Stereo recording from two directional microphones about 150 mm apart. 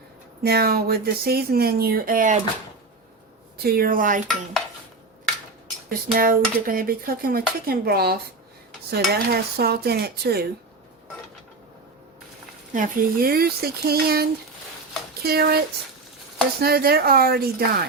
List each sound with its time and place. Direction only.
0.4 s speech: 90° right; by 2.4 s 60° right (ahead or behind)
3.6 s speech: 85° right; by 4.2 s 65° right (ahead or behind)
5.9 s speech: 70° right (ahead or behind); by 10.4 s 90° right
12.7 s speech: 65° right (ahead or behind); by 17.8 s 90° right